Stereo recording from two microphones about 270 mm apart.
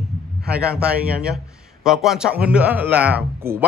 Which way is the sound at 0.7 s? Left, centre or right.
Centre.